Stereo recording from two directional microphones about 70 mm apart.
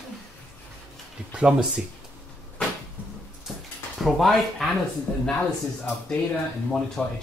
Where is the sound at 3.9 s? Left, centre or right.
Centre.